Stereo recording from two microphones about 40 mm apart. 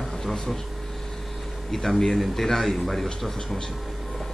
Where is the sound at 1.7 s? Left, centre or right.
Centre.